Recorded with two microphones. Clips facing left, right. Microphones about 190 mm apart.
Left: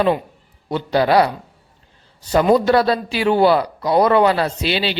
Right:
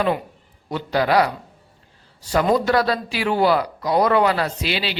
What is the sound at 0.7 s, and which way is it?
Speech, 30° left (ahead or behind).